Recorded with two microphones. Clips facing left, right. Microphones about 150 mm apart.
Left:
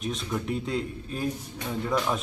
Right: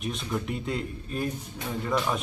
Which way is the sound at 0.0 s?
Centre (ahead or behind).